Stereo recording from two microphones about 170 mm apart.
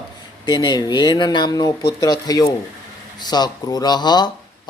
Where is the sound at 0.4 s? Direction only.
25° left (ahead or behind).